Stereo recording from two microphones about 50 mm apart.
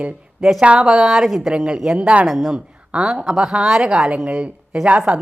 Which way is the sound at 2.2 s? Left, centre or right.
Centre.